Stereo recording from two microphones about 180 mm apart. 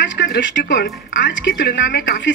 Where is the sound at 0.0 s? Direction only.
85° left.